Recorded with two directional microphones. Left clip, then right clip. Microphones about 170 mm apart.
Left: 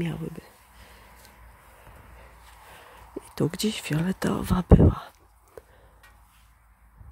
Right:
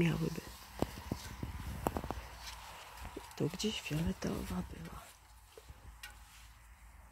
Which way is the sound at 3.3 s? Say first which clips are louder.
Left 10 dB; 90° left.